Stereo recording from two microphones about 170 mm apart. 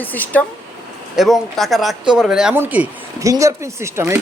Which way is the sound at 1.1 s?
Centre (ahead or behind).